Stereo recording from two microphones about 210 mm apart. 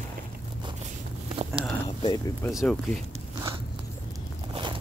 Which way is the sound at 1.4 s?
30° right (ahead or behind).